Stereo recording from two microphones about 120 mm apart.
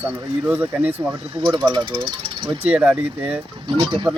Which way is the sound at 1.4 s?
40° right (ahead or behind).